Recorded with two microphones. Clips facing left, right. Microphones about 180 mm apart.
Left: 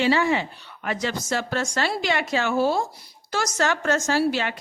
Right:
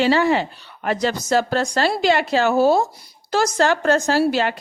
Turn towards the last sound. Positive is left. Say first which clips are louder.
# right 4 dB
turn(degrees=-35)  # may be behind; listen again after turning